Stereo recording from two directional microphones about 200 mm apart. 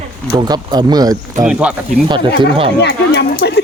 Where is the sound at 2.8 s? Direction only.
55° left (ahead or behind).